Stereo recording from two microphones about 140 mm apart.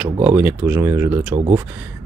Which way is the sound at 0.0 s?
15° right (ahead or behind).